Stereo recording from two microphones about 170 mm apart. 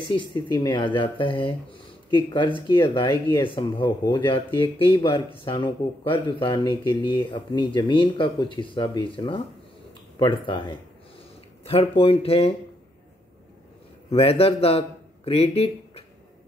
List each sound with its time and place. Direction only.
0.1 s speech: 30° left (ahead or behind)
14.1 s a man's voice: 35° left (ahead or behind)